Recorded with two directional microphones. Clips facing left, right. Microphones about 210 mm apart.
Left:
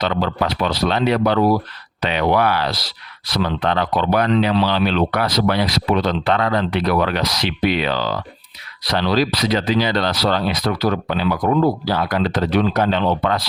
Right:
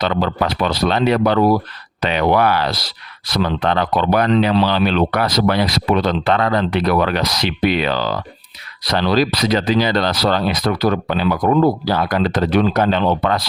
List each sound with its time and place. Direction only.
0.0 s speech: 50° right (ahead or behind)